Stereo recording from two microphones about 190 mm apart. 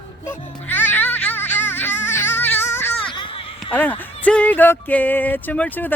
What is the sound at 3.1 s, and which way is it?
Children playing, 25° left (ahead or behind).